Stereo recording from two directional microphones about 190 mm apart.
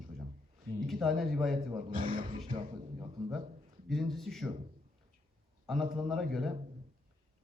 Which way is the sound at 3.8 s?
Centre (ahead or behind).